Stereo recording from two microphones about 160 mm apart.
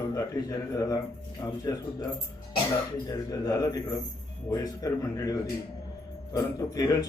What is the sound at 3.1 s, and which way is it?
A man's voice, 25° left (ahead or behind).